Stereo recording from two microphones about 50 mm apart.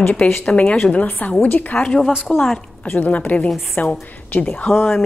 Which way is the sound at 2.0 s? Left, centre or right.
Centre.